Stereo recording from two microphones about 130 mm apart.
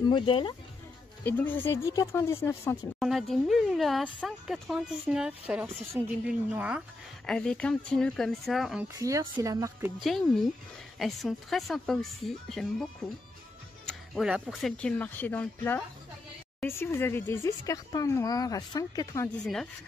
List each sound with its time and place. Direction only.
0.0 s speech: 35° left (ahead or behind)
1.2 s speech: 15° left (ahead or behind)
3.0 s a woman's voice: centre (ahead or behind)
7.2 s speech: 5° left (ahead or behind)
8.8 s speech: 25° right (ahead or behind)
10.0 s speech: centre (ahead or behind)
13.8 s music: 5° right (ahead or behind)
14.6 s speech: 10° left (ahead or behind); by 19.2 s 30° left (ahead or behind)
19.4 s speech: 5° left (ahead or behind)